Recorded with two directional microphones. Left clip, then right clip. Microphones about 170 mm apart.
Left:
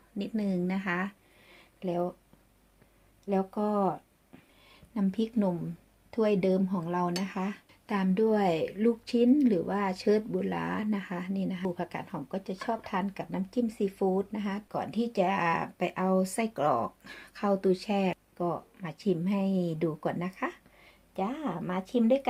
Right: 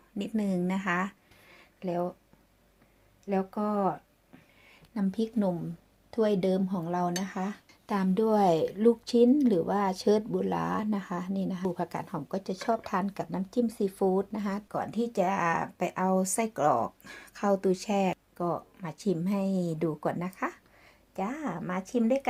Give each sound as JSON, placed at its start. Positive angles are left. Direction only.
{"t": 0.2, "sound": "speech", "side_deg": -20}
{"t": 1.5, "sound": "a sound", "side_deg": -5}
{"t": 3.2, "sound": "speech", "side_deg": -10}
{"t": 4.9, "sound": "speech", "side_deg": -15}
{"t": 21.3, "sound": "speech", "side_deg": 0}